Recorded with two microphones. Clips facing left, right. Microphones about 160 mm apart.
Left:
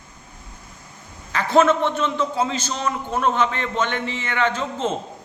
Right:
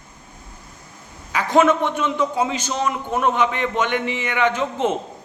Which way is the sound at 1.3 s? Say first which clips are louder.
Right 1 dB; 15° right (ahead or behind).